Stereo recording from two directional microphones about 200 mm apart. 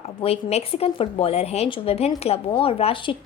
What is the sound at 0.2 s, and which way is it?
Speech, 30° left (ahead or behind).